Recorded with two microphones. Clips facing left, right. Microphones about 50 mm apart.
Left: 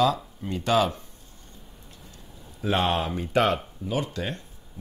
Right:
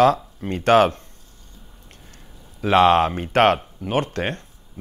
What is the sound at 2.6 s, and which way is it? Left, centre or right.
Speech, right.